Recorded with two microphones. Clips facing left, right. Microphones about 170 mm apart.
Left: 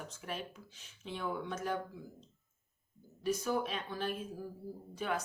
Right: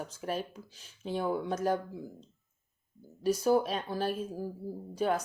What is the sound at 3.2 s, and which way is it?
Speech, 35° right (ahead or behind).